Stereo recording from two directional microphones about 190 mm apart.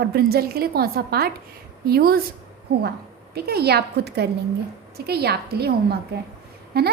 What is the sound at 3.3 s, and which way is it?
A woman's voice, 55° right (ahead or behind).